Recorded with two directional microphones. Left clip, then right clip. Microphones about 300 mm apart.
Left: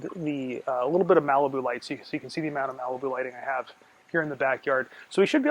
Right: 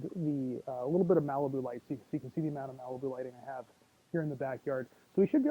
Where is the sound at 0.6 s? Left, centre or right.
Centre.